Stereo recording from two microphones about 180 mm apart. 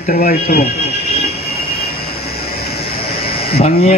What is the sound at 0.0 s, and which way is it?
Speech, 55° left (ahead or behind).